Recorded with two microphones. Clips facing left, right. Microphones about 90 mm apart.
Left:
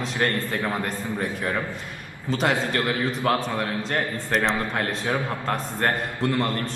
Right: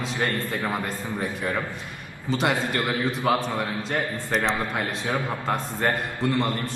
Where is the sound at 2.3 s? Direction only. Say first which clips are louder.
Left 1 dB; centre (ahead or behind).